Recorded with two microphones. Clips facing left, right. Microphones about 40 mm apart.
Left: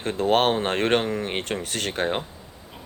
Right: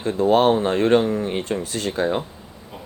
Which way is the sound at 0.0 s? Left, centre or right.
Left.